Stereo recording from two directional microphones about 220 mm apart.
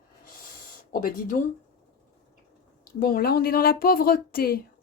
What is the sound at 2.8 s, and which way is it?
Speech, 40° left (ahead or behind).